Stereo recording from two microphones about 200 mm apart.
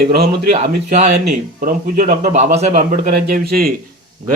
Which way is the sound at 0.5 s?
35° right (ahead or behind).